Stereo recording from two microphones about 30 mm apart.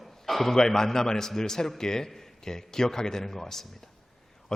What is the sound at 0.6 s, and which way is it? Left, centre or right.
A man's voice, centre.